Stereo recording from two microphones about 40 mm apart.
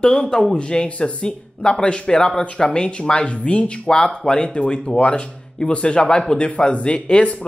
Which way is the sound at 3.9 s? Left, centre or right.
Centre.